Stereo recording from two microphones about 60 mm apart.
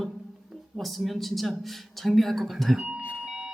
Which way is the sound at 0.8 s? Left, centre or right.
Centre.